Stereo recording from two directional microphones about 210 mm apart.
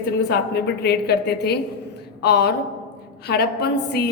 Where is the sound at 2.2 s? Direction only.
50° left (ahead or behind).